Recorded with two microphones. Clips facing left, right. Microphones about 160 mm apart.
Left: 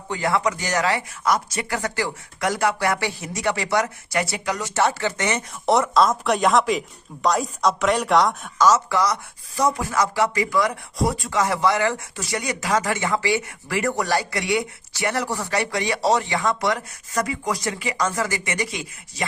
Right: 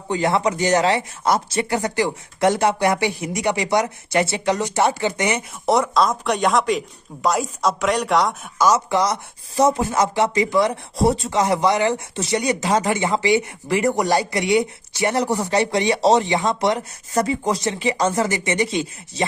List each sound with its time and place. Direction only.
0.1 s speech: 25° right (ahead or behind)
5.6 s speech: centre (ahead or behind)
8.6 s speech: 15° right (ahead or behind)